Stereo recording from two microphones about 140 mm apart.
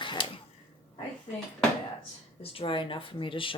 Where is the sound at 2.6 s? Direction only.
35° left (ahead or behind).